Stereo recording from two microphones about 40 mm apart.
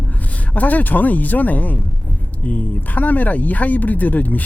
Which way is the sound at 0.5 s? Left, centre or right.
Left.